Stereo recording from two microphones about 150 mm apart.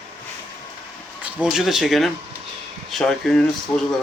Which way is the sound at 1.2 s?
5° right (ahead or behind).